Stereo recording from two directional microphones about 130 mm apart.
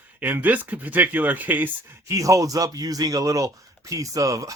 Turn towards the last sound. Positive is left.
turn(degrees=-25)  # may be behind; listen again after turning